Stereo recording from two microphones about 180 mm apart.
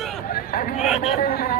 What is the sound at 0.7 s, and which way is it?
Speech, 5° right (ahead or behind).